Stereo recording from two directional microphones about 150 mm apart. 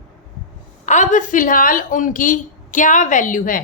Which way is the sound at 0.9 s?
55° left (ahead or behind).